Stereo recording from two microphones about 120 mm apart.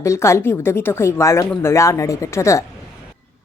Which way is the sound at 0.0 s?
25° left (ahead or behind).